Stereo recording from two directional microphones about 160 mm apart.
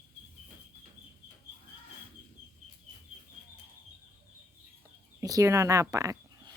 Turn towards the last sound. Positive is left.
turn(degrees=-20)  # may be behind; listen again after turning